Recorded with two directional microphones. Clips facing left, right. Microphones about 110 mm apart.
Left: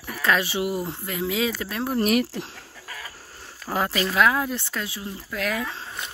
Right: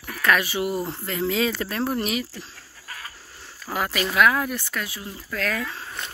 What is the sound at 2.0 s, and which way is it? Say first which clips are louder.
Speech: left 6 dB; 60° left (ahead or behind).